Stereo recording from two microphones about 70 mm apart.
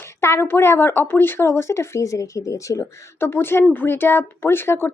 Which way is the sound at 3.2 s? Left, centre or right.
Left.